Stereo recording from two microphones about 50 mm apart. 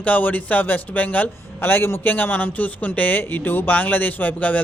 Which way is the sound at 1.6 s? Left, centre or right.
Left.